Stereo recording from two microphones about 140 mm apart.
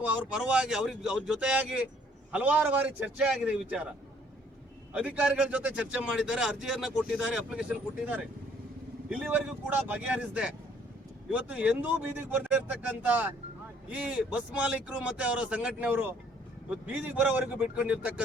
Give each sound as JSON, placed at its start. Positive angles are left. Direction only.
{"t": 0.0, "sound": "speech", "side_deg": -5}
{"t": 4.9, "sound": "speech", "side_deg": -10}
{"t": 9.0, "sound": "speech", "side_deg": -10}